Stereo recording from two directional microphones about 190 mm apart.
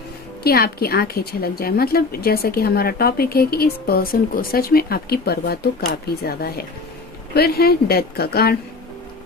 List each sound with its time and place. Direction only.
0.4 s a woman's voice: 55° left (ahead or behind)